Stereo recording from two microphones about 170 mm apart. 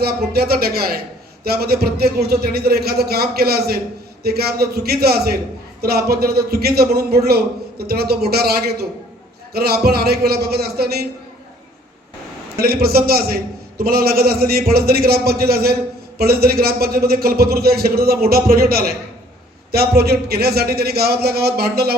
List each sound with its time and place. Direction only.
0.0 s a man's voice: 65° right (ahead or behind)
12.5 s a man's voice: 65° right (ahead or behind)